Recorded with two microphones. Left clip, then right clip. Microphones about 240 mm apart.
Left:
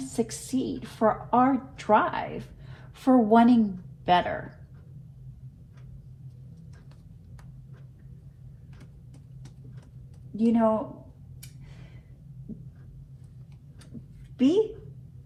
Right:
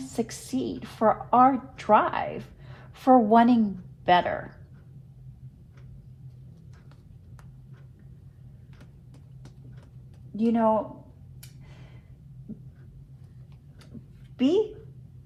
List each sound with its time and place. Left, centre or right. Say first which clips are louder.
0.0 s a woman's voice: left 1 dB; right
10.5 s a woman's voice: right 1 dB; right
14.3 s a woman's voice: even; right